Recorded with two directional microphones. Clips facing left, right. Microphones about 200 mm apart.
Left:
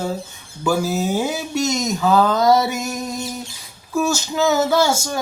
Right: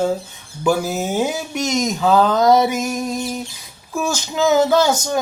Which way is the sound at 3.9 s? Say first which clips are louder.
Left 2 dB; 15° right (ahead or behind).